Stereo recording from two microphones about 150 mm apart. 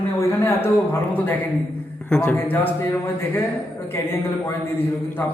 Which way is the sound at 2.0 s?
10° left (ahead or behind).